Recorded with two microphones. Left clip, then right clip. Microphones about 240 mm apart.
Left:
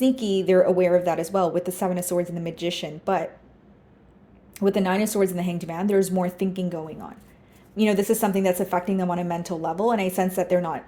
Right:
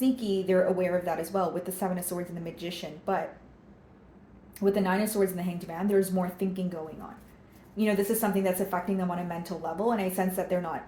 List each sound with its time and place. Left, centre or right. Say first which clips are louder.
0.0 s a woman's voice: left 6 dB; left
4.5 s a woman's voice: left 4 dB; left
7.8 s a woman's voice: left 6 dB; left